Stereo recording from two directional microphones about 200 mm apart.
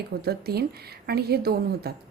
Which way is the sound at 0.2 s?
50° right (ahead or behind).